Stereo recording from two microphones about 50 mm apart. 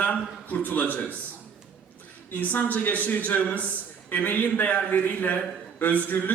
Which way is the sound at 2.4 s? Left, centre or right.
Left.